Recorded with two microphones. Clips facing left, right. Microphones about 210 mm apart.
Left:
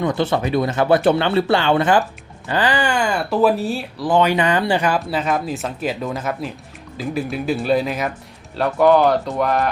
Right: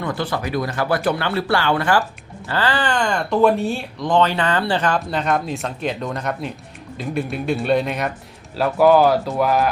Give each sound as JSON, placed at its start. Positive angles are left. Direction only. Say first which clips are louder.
{"t": 0.0, "sound": "speech", "louder": "left 5 dB", "side_deg": 20}